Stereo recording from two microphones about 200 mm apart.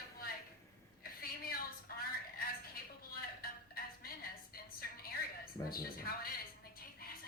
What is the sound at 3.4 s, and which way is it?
Music, 50° left (ahead or behind).